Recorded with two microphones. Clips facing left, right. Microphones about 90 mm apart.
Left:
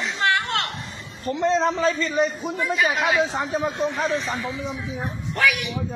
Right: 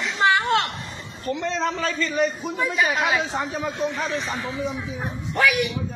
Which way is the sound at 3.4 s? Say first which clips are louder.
Left 3 dB; 25° left (ahead or behind).